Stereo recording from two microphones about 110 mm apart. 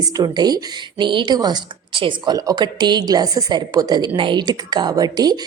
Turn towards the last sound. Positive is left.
turn(degrees=-35)  # may be behind; listen again after turning